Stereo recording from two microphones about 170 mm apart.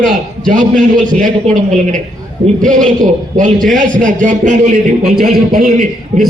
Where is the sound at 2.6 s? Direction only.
50° right (ahead or behind).